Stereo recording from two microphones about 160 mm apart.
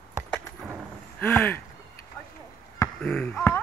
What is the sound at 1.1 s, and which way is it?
Speech, 10° left (ahead or behind).